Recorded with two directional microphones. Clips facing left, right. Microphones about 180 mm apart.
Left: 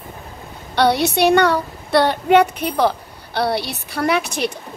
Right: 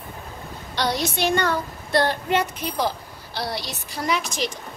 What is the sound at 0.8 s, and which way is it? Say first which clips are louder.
A woman's voice: left 8 dB; 65° left (ahead or behind).